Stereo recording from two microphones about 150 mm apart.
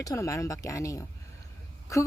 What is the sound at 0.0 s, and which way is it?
Speech, 20° left (ahead or behind).